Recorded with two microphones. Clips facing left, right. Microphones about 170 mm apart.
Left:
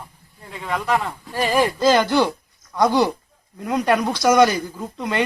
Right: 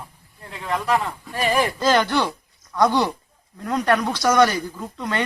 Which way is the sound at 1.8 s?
10° left (ahead or behind).